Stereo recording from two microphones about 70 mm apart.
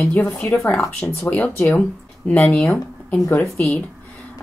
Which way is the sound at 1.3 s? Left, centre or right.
Left.